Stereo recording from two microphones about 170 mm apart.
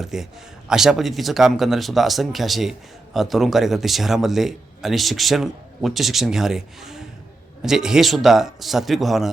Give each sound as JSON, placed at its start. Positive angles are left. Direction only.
{"t": 0.0, "sound": "speech", "side_deg": 0}